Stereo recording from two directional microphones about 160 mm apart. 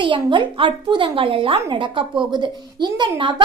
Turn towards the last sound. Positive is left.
turn(degrees=-30)  # may be behind; listen again after turning